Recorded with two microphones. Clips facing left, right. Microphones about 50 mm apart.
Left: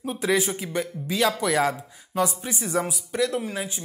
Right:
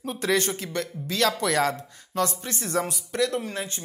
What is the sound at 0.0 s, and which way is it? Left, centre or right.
Speech, centre.